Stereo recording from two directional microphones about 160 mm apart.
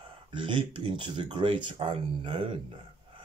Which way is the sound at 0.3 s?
30° right (ahead or behind).